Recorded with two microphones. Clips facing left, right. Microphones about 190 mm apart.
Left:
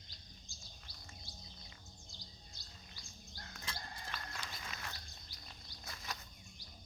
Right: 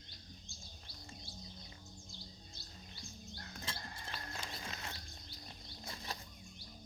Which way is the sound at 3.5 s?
30° right (ahead or behind).